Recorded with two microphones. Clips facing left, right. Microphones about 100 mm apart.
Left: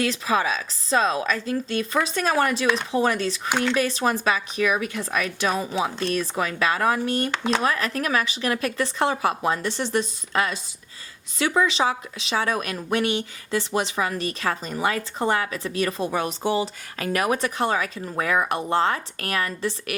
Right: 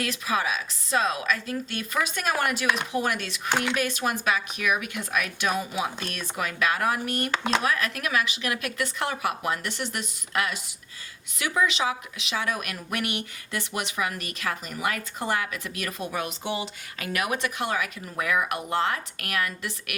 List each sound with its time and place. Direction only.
0.0 s speech: 30° left (ahead or behind)